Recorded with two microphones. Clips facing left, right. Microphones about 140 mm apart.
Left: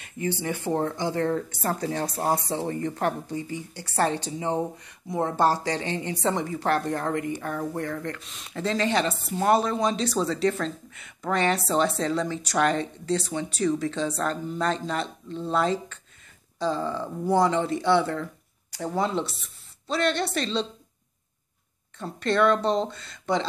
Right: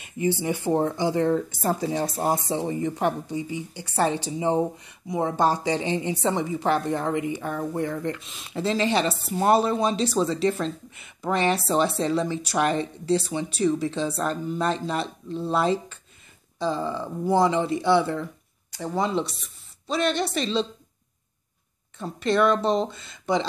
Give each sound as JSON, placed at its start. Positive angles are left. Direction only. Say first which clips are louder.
{"t": 0.4, "sound": "speech", "louder": "right 1 dB", "side_deg": -15}
{"t": 4.3, "sound": "speech", "louder": "right 4 dB", "side_deg": -15}
{"t": 5.3, "sound": "speech", "louder": "even", "side_deg": 0}
{"t": 5.7, "sound": "speech", "louder": "right 4 dB", "side_deg": -15}
{"t": 6.1, "sound": "speech", "louder": "right 1 dB", "side_deg": -5}
{"t": 8.8, "sound": "speech", "louder": "right 1 dB", "side_deg": -30}
{"t": 11.4, "sound": "a woman's voice", "louder": "right 1 dB", "side_deg": -5}
{"t": 21.9, "sound": "speech", "louder": "right 2 dB", "side_deg": -5}